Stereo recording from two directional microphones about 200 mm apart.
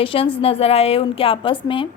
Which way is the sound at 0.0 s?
25° left (ahead or behind).